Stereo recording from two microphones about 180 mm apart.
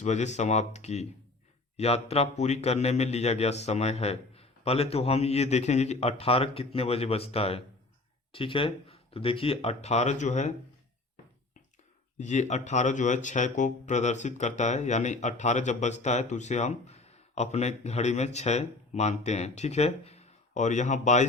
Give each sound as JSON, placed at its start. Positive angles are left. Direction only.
{"t": 0.0, "sound": "speech", "side_deg": 40}
{"t": 12.1, "sound": "speech", "side_deg": 40}